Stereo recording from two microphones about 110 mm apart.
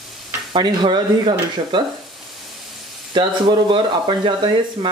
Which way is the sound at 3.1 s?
45° right (ahead or behind).